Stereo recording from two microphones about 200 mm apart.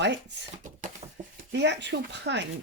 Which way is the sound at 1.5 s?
60° right (ahead or behind).